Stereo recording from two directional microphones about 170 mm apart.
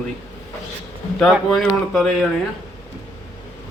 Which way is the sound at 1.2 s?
Centre (ahead or behind).